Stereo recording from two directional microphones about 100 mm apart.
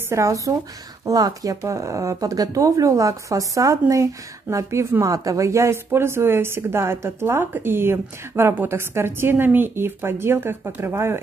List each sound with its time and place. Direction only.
0.1 s a woman's voice: 30° right (ahead or behind)